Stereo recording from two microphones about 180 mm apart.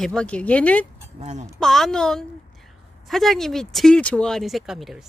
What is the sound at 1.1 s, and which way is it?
Speech, 40° right (ahead or behind).